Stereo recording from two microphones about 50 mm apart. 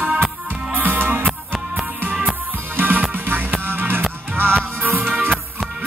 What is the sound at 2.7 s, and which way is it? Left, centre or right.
Music, right.